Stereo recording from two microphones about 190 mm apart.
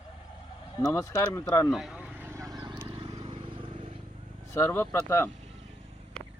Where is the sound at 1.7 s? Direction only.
Centre (ahead or behind); by 4.0 s 30° right (ahead or behind).